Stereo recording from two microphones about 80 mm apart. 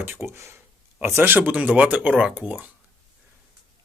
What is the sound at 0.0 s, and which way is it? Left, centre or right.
Speech, right.